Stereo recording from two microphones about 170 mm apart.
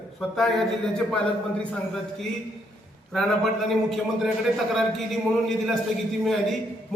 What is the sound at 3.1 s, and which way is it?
A man's voice, centre (ahead or behind).